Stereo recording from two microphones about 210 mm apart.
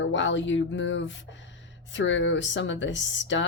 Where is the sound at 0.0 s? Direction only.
60° left (ahead or behind).